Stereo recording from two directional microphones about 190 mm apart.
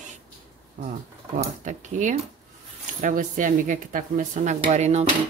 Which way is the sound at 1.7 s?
40° right (ahead or behind).